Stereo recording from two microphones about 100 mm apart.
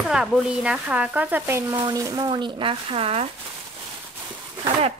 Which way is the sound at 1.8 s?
40° right (ahead or behind).